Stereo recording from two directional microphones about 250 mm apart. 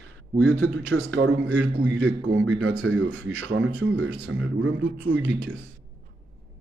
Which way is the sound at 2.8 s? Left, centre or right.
Right.